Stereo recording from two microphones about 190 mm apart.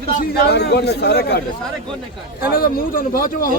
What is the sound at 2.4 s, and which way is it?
A man's voice, 50° left (ahead or behind).